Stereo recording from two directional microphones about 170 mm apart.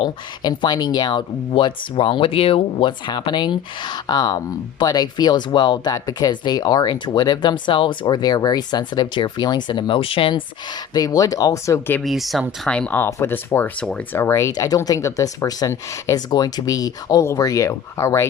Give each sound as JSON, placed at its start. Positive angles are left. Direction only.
{"t": 0.0, "sound": "speech", "side_deg": 25}
{"t": 12.0, "sound": "speech", "side_deg": 0}